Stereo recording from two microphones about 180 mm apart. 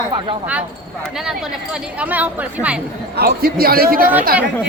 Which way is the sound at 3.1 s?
60° right (ahead or behind).